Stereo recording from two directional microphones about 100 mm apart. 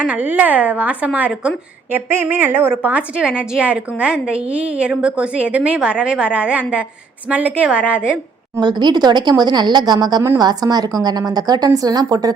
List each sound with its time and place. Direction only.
0.0 s a woman's voice: 15° right (ahead or behind)
8.6 s a woman's voice: 45° right (ahead or behind)